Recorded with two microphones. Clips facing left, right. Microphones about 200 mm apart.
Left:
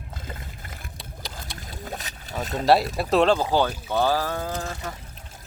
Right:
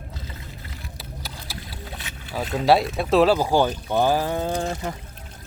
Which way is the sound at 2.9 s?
Centre (ahead or behind).